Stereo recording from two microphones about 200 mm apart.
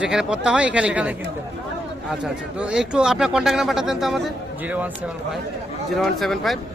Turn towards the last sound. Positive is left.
turn(degrees=0)  # may be behind; listen again after turning